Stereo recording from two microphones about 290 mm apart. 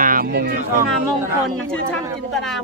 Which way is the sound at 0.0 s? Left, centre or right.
Right.